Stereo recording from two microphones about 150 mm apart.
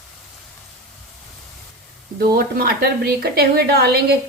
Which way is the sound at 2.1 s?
85° right.